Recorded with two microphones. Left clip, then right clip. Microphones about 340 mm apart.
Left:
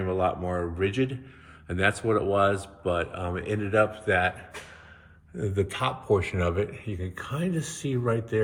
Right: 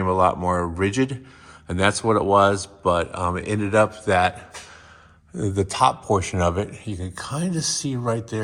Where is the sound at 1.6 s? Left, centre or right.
Right.